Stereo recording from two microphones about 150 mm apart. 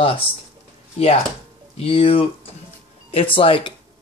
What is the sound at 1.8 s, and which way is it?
Speech, 40° left (ahead or behind).